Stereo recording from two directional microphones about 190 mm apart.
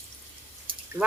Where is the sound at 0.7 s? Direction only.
25° right (ahead or behind).